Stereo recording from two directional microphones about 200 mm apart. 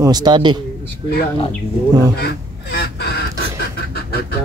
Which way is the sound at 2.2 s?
55° left (ahead or behind).